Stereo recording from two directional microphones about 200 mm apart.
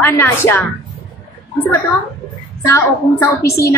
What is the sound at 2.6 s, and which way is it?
Speech, 15° left (ahead or behind).